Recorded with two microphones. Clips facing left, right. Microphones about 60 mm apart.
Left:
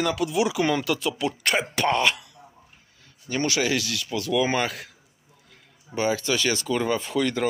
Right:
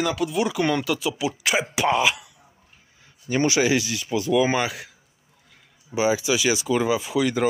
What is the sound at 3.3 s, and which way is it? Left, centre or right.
Speech, centre.